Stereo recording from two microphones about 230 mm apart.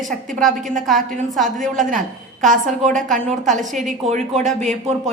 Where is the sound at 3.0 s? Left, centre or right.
Centre.